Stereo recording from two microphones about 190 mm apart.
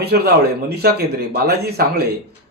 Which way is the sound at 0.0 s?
55° right (ahead or behind).